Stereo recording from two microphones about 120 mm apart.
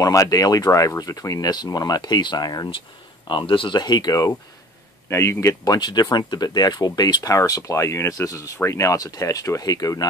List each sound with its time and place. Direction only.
0.0 s speech: 30° left (ahead or behind)
3.3 s speech: 45° left (ahead or behind)
5.1 s speech: 20° left (ahead or behind)